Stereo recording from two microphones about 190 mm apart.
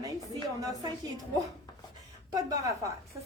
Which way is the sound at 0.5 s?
20° right (ahead or behind).